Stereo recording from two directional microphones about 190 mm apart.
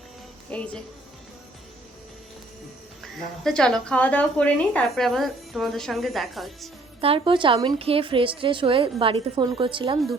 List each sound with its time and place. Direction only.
0.5 s speech: 5° left (ahead or behind)
3.0 s a woman's voice: 5° left (ahead or behind)
7.0 s a woman's voice: 30° right (ahead or behind)